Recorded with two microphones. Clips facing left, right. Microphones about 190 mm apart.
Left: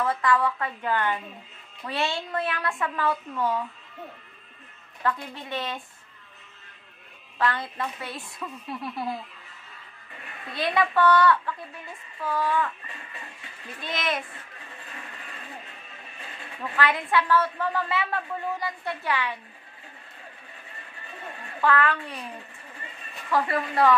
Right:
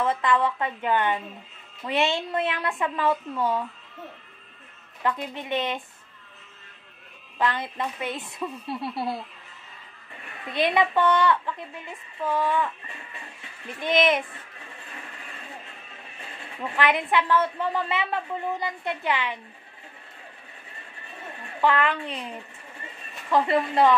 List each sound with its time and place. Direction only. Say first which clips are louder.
0.0 s a woman's voice: right 1 dB; 20° right (ahead or behind)
5.0 s a woman's voice: right 1 dB; 20° right (ahead or behind)
7.3 s a woman's voice: right 1 dB; 20° right (ahead or behind)
8.6 s speech: right 1 dB; 30° right (ahead or behind)
10.5 s a woman's voice: right 2 dB; 20° right (ahead or behind)
13.8 s a woman's voice: right 8 dB; 20° right (ahead or behind)
16.7 s a woman's voice: right 1 dB; 20° right (ahead or behind)
21.5 s a woman's voice: right 1 dB; 20° right (ahead or behind)
23.3 s a woman's voice: right 3 dB; 25° right (ahead or behind)